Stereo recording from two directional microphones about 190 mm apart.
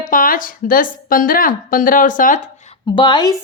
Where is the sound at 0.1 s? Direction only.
45° left (ahead or behind).